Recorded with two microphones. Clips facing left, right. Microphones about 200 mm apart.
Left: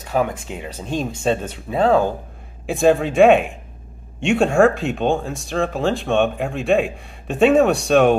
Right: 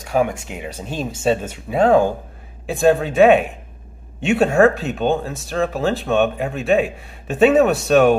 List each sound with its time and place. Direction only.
0.0 s speech: 10° right (ahead or behind)
2.6 s speech: centre (ahead or behind)